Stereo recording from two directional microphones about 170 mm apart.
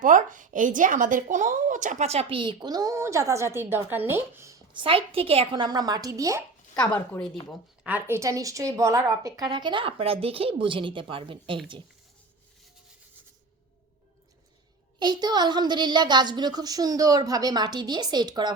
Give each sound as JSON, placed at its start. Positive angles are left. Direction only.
{"t": 0.0, "sound": "speech", "side_deg": -50}
{"t": 4.7, "sound": "a woman's voice", "side_deg": -30}
{"t": 6.7, "sound": "speech", "side_deg": 5}
{"t": 7.9, "sound": "a woman's voice", "side_deg": -10}
{"t": 14.9, "sound": "a woman's voice", "side_deg": -25}